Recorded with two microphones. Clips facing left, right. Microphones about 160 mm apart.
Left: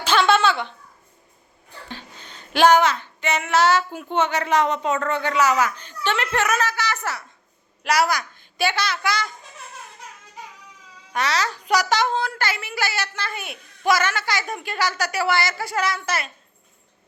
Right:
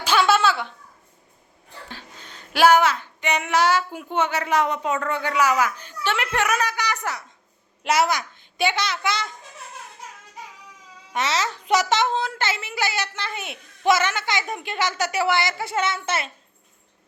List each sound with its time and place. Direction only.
0.0 s a sound: 10° right (ahead or behind)
1.9 s female singing: centre (ahead or behind)
7.9 s a child's voice: 20° right (ahead or behind)
11.1 s a child's voice: 25° right (ahead or behind)